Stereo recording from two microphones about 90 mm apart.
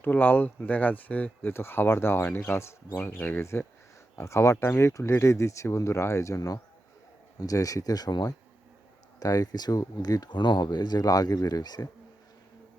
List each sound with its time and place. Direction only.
0.0 s speech: 20° left (ahead or behind); by 11.9 s 45° left (ahead or behind)